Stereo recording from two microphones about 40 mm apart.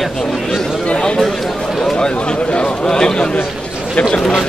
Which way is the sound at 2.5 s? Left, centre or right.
Centre.